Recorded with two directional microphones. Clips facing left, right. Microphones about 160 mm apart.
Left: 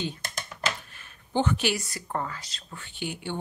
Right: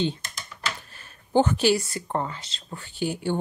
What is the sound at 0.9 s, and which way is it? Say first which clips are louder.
Speech: right 8 dB; 40° right (ahead or behind).